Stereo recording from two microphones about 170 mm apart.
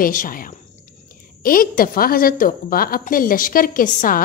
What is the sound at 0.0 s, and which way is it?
A woman's voice, 55° left (ahead or behind).